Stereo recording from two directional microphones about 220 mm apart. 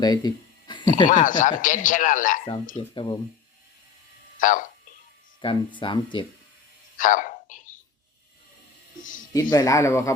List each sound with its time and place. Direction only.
0.0 s a sound: 20° left (ahead or behind)
1.0 s speech: 35° left (ahead or behind)
2.9 s speech: 20° left (ahead or behind)
4.4 s speech: 35° left (ahead or behind)
5.4 s speech: 20° left (ahead or behind)
6.9 s a sound: 35° left (ahead or behind)
9.3 s speech: 15° left (ahead or behind)